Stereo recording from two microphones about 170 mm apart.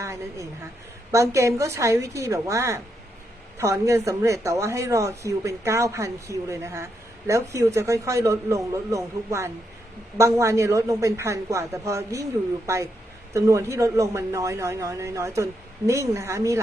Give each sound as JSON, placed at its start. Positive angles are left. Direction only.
{"t": 0.0, "sound": "a woman's voice", "side_deg": -20}